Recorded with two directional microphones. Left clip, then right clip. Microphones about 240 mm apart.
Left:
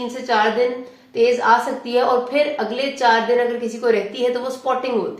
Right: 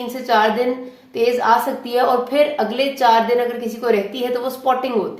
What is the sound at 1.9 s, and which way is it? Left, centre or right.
Speech, right.